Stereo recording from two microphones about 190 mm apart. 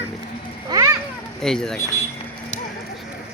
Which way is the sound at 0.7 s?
20° right (ahead or behind).